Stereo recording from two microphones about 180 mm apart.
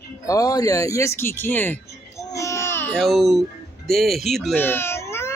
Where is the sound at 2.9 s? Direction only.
Centre (ahead or behind).